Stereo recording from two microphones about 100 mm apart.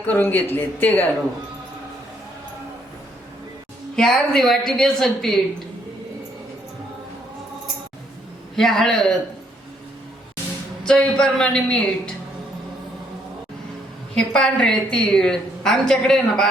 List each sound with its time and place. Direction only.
0.1 s a woman's voice: 15° left (ahead or behind)
3.9 s a woman's voice: 5° left (ahead or behind)
8.5 s a woman's voice: 5° left (ahead or behind)
10.8 s a woman's voice: 10° left (ahead or behind)
14.2 s a woman's voice: 10° left (ahead or behind)